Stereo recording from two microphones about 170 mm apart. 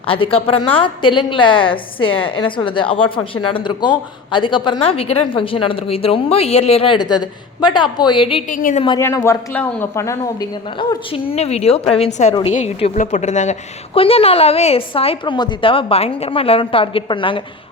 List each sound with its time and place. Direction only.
0.0 s a woman's voice: 30° left (ahead or behind)
8.4 s a woman's voice: 50° left (ahead or behind)
9.0 s speech: 15° left (ahead or behind)
10.8 s a woman's voice: 30° left (ahead or behind)
12.5 s a woman's voice: 40° left (ahead or behind)